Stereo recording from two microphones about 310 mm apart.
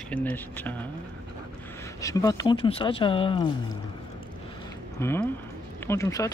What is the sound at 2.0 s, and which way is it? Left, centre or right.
Speech, centre.